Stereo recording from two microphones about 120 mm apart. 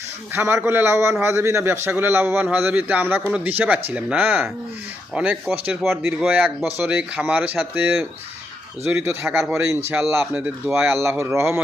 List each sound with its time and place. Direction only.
0.3 s a man's voice: 20° right (ahead or behind)
10.3 s a man's voice: 5° right (ahead or behind)
10.8 s a man's voice: 20° right (ahead or behind)